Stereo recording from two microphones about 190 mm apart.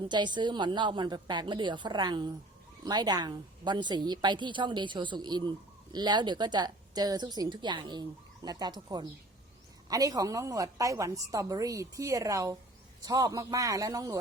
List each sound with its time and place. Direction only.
0.1 s a woman's voice: 25° right (ahead or behind)